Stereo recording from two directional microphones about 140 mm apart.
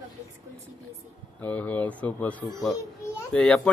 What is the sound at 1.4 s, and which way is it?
A man's voice, 10° left (ahead or behind).